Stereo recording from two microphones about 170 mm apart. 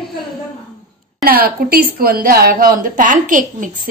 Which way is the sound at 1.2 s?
60° right (ahead or behind).